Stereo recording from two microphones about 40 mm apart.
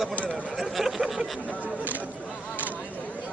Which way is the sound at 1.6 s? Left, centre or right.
Right.